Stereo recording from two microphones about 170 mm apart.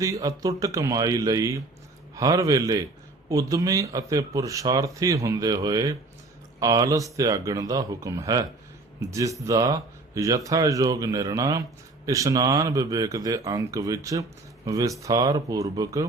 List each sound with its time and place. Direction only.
0.0 s speech: 20° right (ahead or behind)